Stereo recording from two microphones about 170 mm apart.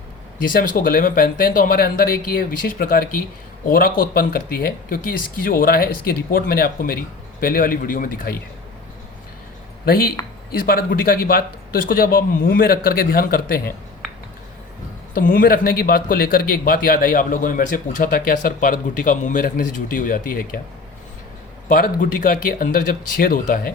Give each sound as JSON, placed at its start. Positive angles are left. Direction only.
{"t": 0.4, "sound": "a man's voice", "side_deg": 55}
{"t": 9.8, "sound": "a man's voice", "side_deg": 60}
{"t": 15.1, "sound": "a man's voice", "side_deg": 55}
{"t": 21.7, "sound": "a man's voice", "side_deg": 55}